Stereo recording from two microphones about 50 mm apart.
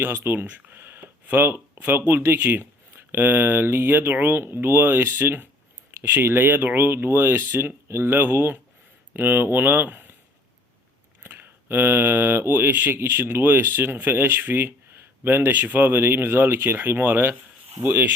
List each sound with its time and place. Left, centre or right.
0.0 s speech: right
0.4 s speech: right
0.8 s speech: right
11.2 s speech: right